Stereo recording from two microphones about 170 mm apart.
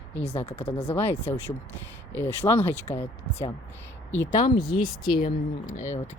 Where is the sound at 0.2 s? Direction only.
40° left (ahead or behind).